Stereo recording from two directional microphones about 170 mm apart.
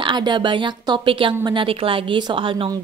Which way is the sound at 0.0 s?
25° right (ahead or behind).